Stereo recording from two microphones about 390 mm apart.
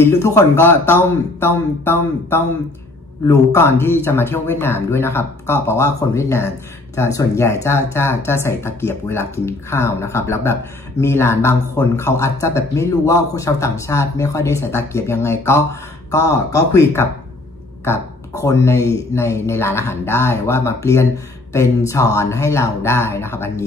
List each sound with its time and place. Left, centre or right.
0.0 s speech: centre